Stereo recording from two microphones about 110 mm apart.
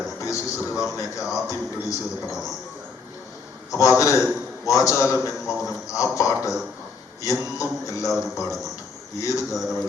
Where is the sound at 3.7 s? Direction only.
30° left (ahead or behind).